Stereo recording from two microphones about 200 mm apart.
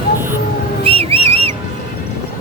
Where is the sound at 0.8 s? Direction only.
30° right (ahead or behind).